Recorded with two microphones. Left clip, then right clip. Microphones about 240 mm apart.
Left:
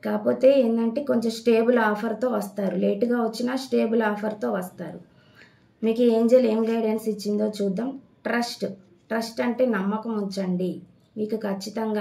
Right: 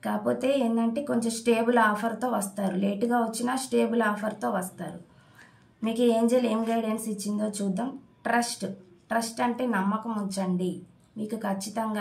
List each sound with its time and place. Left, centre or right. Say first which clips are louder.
0.0 s speech: left 8 dB; right